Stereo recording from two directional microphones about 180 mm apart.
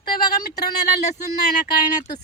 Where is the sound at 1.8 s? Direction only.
25° left (ahead or behind).